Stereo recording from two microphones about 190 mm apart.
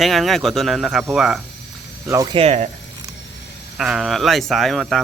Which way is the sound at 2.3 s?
35° right (ahead or behind).